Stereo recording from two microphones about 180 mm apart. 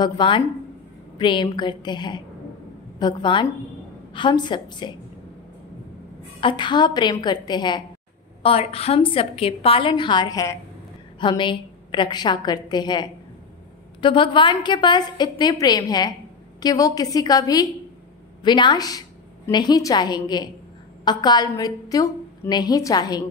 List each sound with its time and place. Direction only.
0.0 s a woman's voice: 25° left (ahead or behind)
6.4 s a woman's voice: 25° left (ahead or behind)